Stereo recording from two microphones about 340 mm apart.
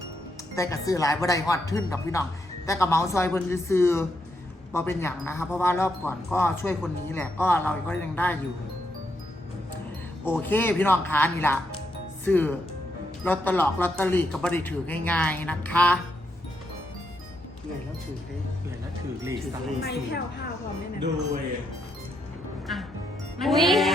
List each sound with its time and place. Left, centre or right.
0.5 s speech: centre
10.2 s speech: centre
19.2 s speech: centre
19.8 s speech: left
22.6 s music: centre
23.4 s speech: centre